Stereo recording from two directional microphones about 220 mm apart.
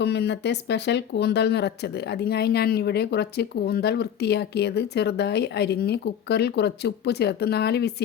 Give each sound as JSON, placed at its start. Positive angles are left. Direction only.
{"t": 0.0, "sound": "speech", "side_deg": 50}